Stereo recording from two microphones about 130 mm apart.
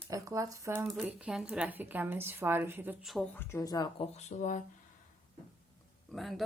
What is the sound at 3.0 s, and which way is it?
Speech, centre (ahead or behind).